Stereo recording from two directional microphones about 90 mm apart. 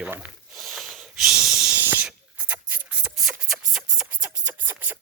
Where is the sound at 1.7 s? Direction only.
20° right (ahead or behind).